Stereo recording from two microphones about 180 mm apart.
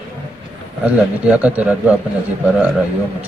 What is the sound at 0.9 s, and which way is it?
Speech, 10° right (ahead or behind).